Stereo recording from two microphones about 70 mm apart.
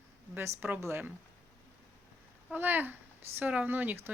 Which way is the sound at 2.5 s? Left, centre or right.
Right.